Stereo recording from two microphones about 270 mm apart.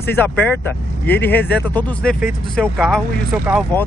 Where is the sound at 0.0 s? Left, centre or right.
Centre.